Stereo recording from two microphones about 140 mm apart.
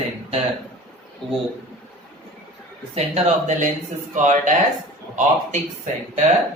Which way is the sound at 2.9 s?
50° right (ahead or behind).